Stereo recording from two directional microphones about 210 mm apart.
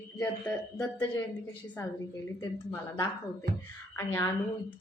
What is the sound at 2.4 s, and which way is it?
A woman's voice, 15° left (ahead or behind).